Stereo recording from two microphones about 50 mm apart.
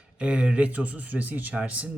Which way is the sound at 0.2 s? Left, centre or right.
Right.